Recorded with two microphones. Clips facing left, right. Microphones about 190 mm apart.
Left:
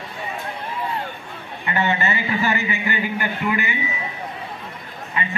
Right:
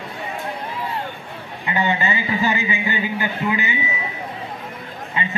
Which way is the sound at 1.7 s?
15° right (ahead or behind).